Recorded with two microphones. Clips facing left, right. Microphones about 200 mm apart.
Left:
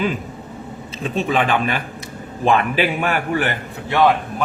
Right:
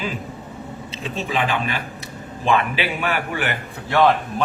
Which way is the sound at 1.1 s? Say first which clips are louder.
Left 4 dB; 55° left (ahead or behind).